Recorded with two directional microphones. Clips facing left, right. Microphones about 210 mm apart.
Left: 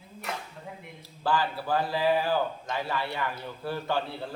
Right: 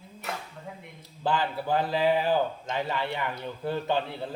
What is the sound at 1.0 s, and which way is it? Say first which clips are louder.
Speech: even; 20° right (ahead or behind).